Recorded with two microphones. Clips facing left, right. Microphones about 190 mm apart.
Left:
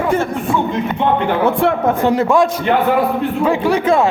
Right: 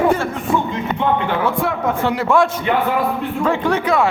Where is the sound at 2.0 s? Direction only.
15° left (ahead or behind).